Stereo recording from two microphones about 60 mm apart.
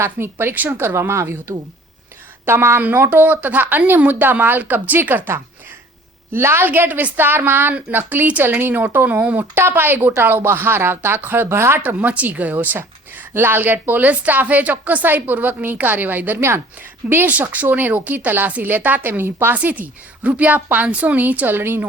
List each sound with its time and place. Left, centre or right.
0.0 s a woman's voice: right
6.7 s a woman's voice: right
11.8 s a woman's voice: right
13.3 s a woman's voice: right
19.5 s a woman's voice: right